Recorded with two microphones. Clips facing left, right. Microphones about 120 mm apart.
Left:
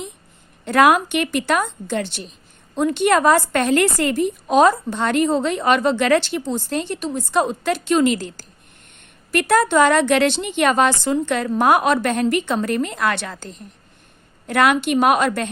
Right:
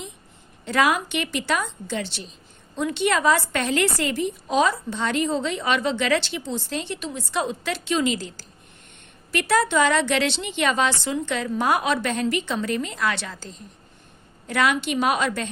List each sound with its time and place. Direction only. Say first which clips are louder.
0.6 s a woman's voice: left 7 dB; 55° left (ahead or behind)